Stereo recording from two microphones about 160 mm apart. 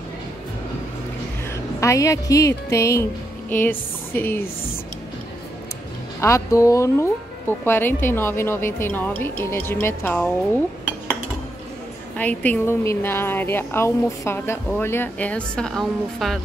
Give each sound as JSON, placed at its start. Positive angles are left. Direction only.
{"t": 1.8, "sound": "speech", "side_deg": 20}
{"t": 6.2, "sound": "a woman's voice", "side_deg": 20}
{"t": 12.2, "sound": "a woman's voice", "side_deg": 10}